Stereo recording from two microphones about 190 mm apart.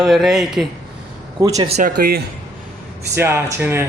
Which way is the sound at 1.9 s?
55° right (ahead or behind).